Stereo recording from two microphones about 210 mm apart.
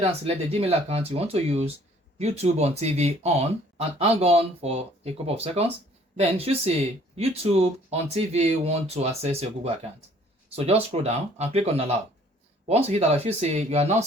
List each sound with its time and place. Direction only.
0.6 s speech: 30° right (ahead or behind)